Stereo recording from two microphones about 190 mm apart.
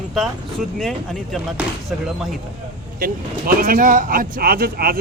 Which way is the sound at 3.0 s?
50° right (ahead or behind).